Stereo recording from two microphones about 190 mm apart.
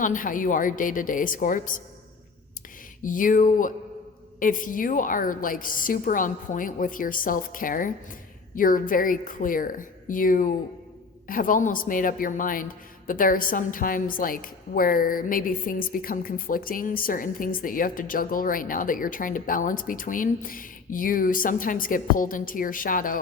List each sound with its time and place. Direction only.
0.0 s a woman's voice: 45° left (ahead or behind)
3.0 s a woman's voice: 45° left (ahead or behind)